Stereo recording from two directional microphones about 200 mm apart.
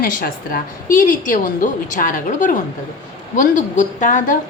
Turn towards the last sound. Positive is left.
turn(degrees=40)  # may be behind; listen again after turning